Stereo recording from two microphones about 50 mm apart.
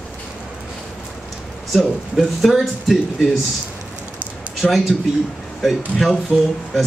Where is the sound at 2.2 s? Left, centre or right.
Centre.